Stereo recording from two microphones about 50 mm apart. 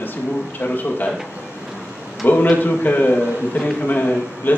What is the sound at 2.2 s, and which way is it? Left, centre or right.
A man's voice, left.